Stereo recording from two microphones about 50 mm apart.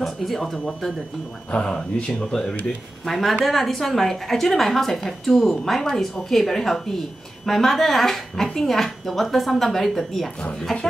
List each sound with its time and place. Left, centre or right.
0.0 s speech: centre
1.5 s speech: centre
3.1 s a woman's voice: centre